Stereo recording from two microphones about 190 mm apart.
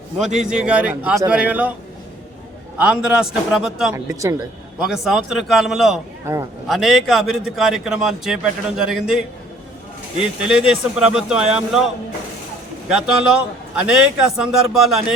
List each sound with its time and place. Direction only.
0.3 s a man's voice: 5° right (ahead or behind)
2.7 s a man's voice: 5° right (ahead or behind)
3.9 s a man's voice: 15° right (ahead or behind)
4.8 s a man's voice: centre (ahead or behind)
12.9 s a man's voice: 5° right (ahead or behind)